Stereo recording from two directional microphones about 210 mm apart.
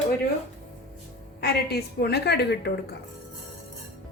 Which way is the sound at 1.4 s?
50° left (ahead or behind).